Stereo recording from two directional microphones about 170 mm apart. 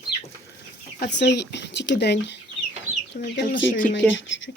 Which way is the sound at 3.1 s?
55° left (ahead or behind).